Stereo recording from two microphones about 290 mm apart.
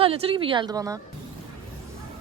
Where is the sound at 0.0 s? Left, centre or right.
Centre.